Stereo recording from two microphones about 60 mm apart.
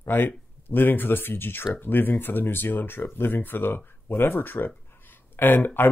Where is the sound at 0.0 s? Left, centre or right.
Left.